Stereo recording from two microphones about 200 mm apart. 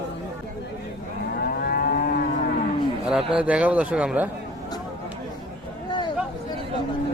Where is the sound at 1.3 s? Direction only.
50° left (ahead or behind).